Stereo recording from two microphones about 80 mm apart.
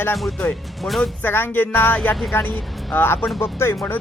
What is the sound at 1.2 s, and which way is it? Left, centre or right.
Speech, left.